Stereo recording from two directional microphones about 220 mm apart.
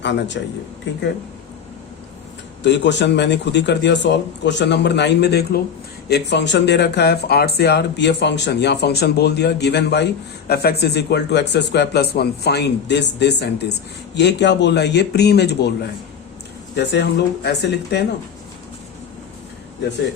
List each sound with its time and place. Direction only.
0.0 s speech: 55° left (ahead or behind)
2.6 s speech: 55° left (ahead or behind)
16.7 s speech: 50° left (ahead or behind)